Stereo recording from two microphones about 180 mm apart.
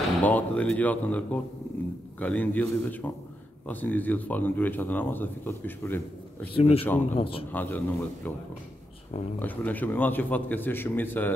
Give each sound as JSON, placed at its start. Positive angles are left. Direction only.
{"t": 0.2, "sound": "speech", "side_deg": 10}
{"t": 6.5, "sound": "speech", "side_deg": 30}
{"t": 7.5, "sound": "speech", "side_deg": 10}
{"t": 9.4, "sound": "speech", "side_deg": 10}